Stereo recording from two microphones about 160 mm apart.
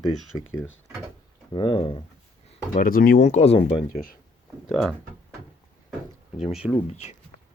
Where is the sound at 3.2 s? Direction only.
40° left (ahead or behind).